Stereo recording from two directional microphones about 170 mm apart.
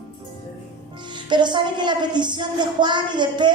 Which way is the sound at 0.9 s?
25° right (ahead or behind).